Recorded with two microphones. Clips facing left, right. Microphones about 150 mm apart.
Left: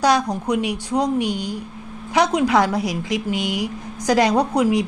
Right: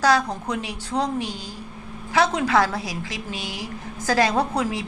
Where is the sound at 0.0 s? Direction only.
15° left (ahead or behind).